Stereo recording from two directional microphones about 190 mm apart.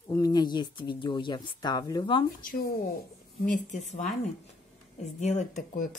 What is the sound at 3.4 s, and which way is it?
Speech, 40° left (ahead or behind).